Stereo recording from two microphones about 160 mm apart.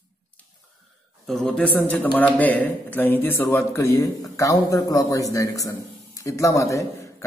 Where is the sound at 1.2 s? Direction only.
Centre (ahead or behind).